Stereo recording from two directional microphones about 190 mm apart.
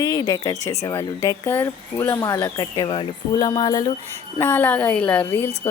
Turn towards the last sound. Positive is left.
turn(degrees=10)  # may be behind; listen again after turning